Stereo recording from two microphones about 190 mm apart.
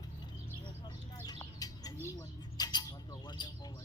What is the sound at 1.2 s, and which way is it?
Bird, 20° left (ahead or behind).